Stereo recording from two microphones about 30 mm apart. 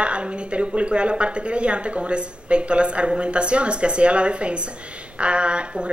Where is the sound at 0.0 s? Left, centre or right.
Right.